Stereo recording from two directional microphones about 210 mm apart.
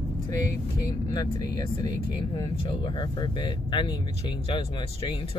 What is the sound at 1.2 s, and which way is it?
Speech, 20° left (ahead or behind).